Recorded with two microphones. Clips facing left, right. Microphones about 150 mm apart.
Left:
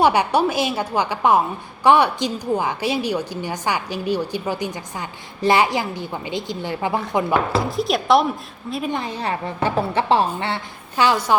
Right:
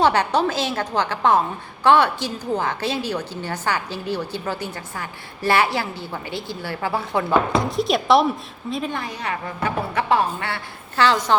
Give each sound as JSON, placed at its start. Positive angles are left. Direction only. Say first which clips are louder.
{"t": 0.0, "sound": "a woman's voice", "louder": "left 1 dB", "side_deg": 10}
{"t": 7.6, "sound": "speech", "louder": "even", "side_deg": 0}
{"t": 8.9, "sound": "a woman's voice", "louder": "left 3 dB", "side_deg": 25}